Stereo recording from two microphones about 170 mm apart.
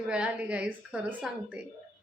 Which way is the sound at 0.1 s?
5° right (ahead or behind).